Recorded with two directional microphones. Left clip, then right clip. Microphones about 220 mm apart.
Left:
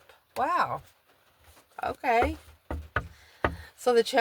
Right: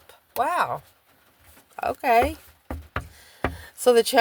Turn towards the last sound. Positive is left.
turn(degrees=-45)  # may be behind; listen again after turning